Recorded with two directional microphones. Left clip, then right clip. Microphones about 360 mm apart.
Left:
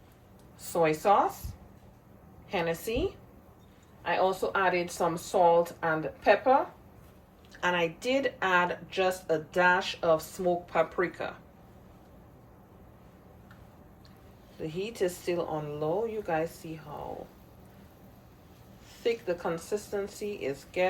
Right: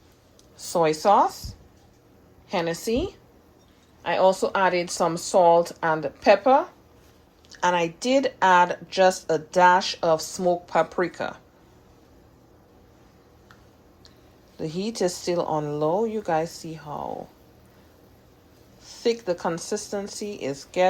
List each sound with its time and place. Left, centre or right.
0.6 s speech: centre
2.5 s speech: centre
4.4 s speech: centre
14.6 s speech: centre
19.0 s speech: centre